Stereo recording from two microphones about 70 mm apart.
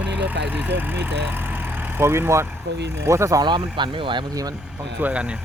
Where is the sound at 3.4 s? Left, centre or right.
Right.